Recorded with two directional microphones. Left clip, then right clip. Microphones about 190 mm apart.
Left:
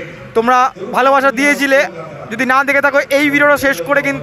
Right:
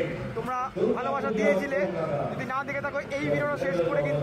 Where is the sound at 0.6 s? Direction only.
35° left (ahead or behind).